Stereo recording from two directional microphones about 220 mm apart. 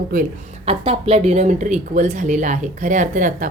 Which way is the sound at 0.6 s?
25° right (ahead or behind).